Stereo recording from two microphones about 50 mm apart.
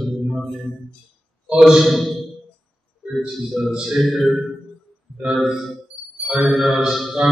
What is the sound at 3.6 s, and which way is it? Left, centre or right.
Speech, centre.